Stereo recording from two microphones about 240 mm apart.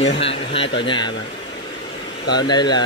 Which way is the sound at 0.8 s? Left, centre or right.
Centre.